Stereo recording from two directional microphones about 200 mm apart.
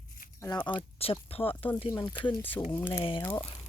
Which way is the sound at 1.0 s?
30° left (ahead or behind).